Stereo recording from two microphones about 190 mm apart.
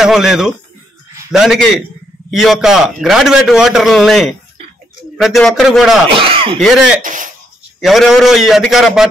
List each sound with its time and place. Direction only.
0.0 s a man's voice: centre (ahead or behind)
6.1 s speech: 30° right (ahead or behind)
6.6 s a man's voice: centre (ahead or behind)
7.0 s speech: 45° right (ahead or behind)
7.8 s a man's voice: centre (ahead or behind)